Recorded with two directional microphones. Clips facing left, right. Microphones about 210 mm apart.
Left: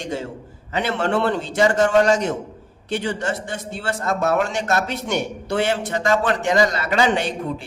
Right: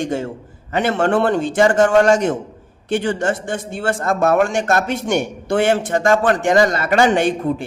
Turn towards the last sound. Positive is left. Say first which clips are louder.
# right 6 dB
turn(degrees=-50)  # may be behind; listen again after turning